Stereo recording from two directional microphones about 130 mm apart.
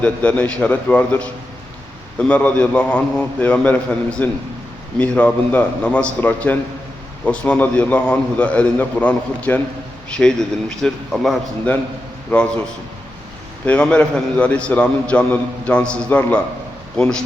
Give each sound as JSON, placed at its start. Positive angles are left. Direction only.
{"t": 0.0, "sound": "a man's voice", "side_deg": 10}
{"t": 13.7, "sound": "a man's voice", "side_deg": 10}